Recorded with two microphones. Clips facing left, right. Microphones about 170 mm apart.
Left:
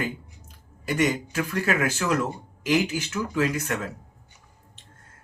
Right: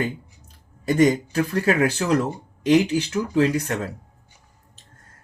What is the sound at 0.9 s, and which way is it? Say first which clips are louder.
Speech: right 6 dB; 35° right (ahead or behind).